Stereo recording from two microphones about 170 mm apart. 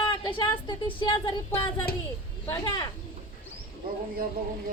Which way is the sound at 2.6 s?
25° left (ahead or behind).